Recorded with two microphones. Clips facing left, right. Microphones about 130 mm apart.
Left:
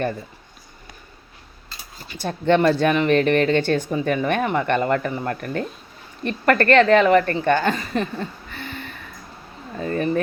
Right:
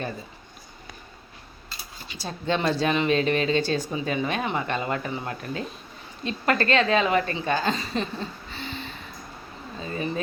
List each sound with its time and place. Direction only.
2.0 s speech: 60° left (ahead or behind)
7.7 s speech: 25° right (ahead or behind)
9.7 s speech: 60° left (ahead or behind)